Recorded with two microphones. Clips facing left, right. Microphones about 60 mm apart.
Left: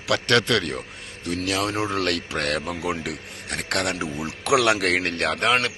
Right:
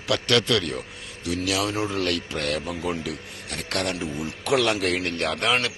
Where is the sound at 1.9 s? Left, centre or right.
Left.